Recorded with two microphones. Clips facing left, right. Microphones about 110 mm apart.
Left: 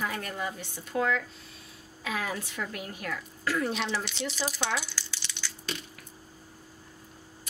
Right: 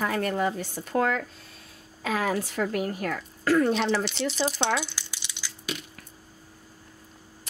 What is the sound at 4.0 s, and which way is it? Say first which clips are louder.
Speech: right 6 dB; 30° right (ahead or behind).